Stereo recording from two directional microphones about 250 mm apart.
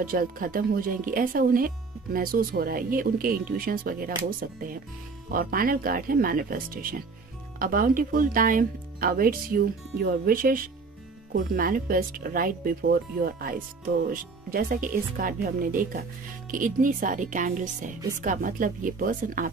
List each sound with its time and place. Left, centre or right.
0.0 s speech: right